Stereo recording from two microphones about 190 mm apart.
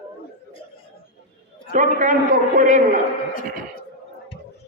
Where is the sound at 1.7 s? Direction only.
45° right (ahead or behind).